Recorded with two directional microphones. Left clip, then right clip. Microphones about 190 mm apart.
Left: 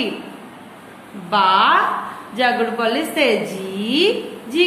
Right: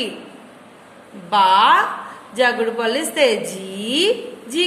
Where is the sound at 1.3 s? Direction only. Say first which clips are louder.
Right 1 dB; 45° right (ahead or behind).